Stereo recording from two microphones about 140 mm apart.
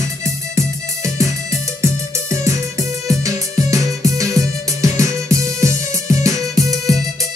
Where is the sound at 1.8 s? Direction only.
20° right (ahead or behind).